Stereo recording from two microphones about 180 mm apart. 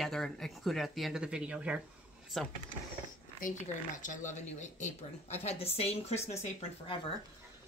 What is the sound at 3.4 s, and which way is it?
Speech, 45° left (ahead or behind).